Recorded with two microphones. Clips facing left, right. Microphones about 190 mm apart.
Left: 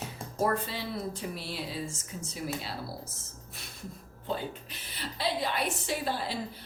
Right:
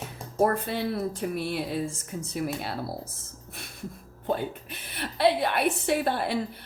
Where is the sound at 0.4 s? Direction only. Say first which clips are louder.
Right 5 dB; 55° right (ahead or behind).